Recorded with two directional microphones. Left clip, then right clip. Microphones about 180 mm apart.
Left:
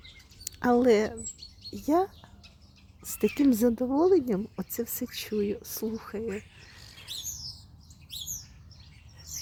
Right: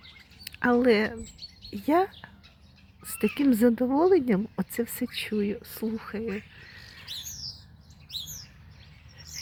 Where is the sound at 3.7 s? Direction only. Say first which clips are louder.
Right 2 dB; 10° right (ahead or behind).